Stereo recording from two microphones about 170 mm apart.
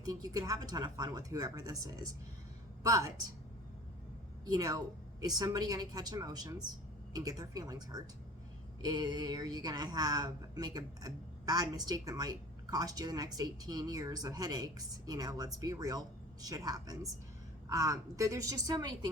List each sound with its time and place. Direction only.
0.0 s a woman's voice: 20° right (ahead or behind)
4.5 s a woman's voice: 20° right (ahead or behind)